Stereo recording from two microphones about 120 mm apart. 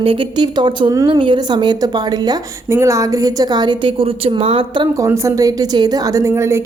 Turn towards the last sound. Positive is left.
turn(degrees=-25)  # may be behind; listen again after turning